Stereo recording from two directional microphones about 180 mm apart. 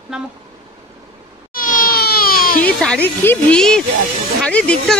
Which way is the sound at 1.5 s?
50° left (ahead or behind).